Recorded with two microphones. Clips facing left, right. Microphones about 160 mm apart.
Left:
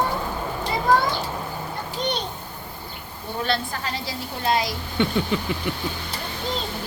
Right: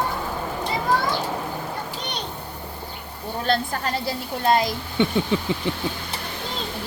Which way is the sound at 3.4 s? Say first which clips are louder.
Right 3 dB; 45° right (ahead or behind).